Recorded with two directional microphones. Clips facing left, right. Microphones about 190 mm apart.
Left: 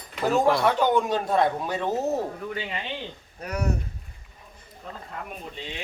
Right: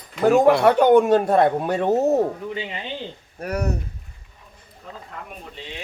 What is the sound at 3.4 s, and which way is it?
Speech, 45° right (ahead or behind).